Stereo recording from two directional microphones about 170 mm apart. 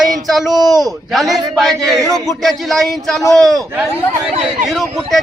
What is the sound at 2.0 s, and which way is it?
Speech, 20° right (ahead or behind).